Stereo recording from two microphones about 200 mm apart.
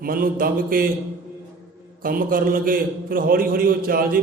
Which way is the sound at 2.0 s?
45° right (ahead or behind).